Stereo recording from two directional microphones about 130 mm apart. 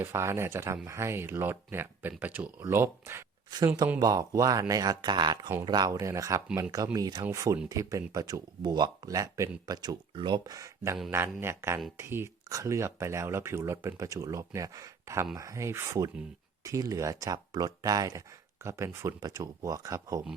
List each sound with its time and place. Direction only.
0.0 s speech: 20° right (ahead or behind)
3.5 s speech: 30° right (ahead or behind)